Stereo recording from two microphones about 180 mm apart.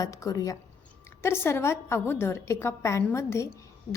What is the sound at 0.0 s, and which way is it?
A woman's voice, 20° left (ahead or behind).